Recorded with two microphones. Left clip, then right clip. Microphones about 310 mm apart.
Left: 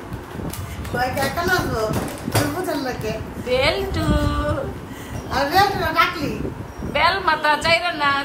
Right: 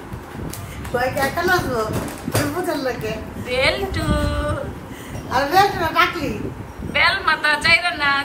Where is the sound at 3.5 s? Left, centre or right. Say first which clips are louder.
Even; centre.